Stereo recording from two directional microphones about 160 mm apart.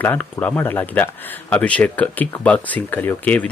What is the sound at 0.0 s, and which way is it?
Speech, 10° left (ahead or behind).